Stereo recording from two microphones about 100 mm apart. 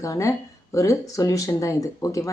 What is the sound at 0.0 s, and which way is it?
Speech, 30° left (ahead or behind).